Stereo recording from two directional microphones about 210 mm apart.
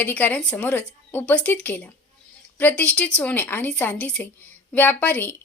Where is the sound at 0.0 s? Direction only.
10° left (ahead or behind).